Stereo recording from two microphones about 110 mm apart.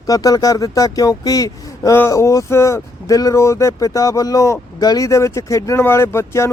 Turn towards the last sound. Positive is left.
turn(degrees=25)  # may be behind; listen again after turning